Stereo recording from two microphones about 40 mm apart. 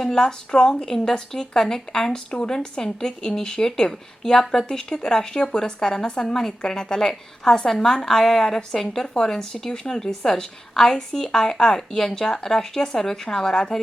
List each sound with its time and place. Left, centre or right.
0.0 s a woman's voice: centre